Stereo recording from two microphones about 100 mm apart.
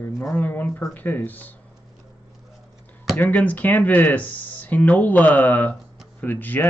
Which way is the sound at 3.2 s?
15° left (ahead or behind).